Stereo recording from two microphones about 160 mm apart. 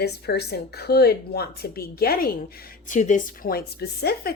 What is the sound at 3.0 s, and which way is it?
Speech, 50° left (ahead or behind).